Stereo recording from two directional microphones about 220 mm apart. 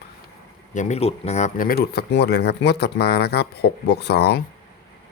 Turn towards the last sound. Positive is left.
turn(degrees=50)  # may be behind; listen again after turning